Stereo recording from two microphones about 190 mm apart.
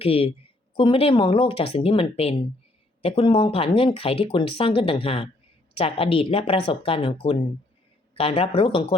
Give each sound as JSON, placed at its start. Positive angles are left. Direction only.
{"t": 0.0, "sound": "speech", "side_deg": 30}